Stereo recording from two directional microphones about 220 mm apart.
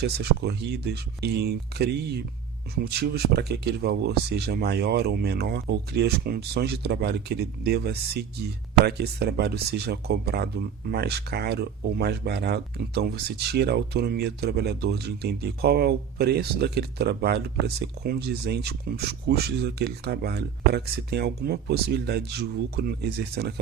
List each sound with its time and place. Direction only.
0.0 s speech: 50° right (ahead or behind)